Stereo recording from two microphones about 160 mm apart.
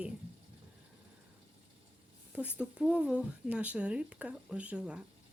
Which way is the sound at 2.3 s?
10° right (ahead or behind).